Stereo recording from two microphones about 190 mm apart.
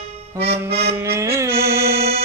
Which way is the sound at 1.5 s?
55° right (ahead or behind).